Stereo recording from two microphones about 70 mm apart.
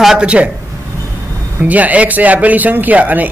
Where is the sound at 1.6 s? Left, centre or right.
Right.